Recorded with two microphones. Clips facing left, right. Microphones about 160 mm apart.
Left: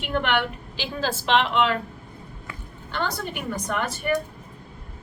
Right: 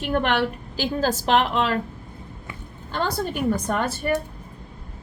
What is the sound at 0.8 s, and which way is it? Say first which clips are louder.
Speech: right 5 dB; 40° right (ahead or behind).